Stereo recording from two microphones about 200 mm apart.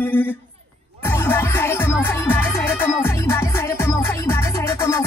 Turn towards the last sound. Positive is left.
turn(degrees=15)  # may be behind; listen again after turning